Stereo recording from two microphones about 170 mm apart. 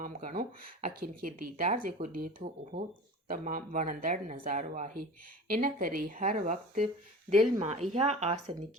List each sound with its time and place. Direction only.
0.0 s speech: 50° right (ahead or behind)